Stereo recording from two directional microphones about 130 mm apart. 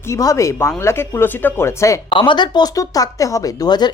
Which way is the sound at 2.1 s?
40° left (ahead or behind).